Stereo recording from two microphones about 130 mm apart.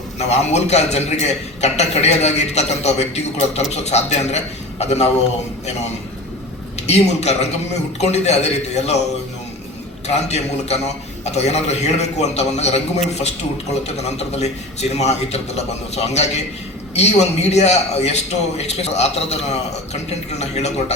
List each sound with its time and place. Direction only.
0.2 s a man's voice: 55° left (ahead or behind)
6.8 s a man's voice: 55° left (ahead or behind)
10.1 s a man's voice: 55° left (ahead or behind)